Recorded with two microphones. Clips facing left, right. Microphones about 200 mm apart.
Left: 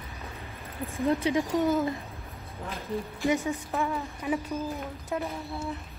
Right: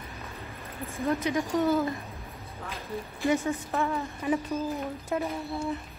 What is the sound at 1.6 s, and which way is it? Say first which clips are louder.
Speech: right 3 dB; 15° left (ahead or behind).